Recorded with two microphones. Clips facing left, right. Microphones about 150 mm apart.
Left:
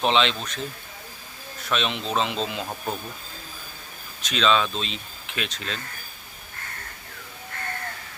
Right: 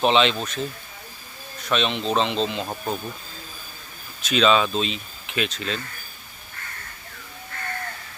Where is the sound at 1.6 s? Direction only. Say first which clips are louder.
Right 3 dB; centre (ahead or behind).